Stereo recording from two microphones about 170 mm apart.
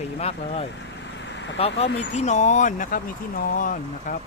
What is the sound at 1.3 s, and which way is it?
Vehicle, 90° left.